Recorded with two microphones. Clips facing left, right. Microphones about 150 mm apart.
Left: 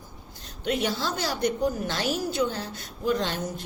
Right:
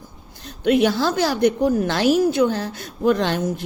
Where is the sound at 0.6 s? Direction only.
70° right (ahead or behind).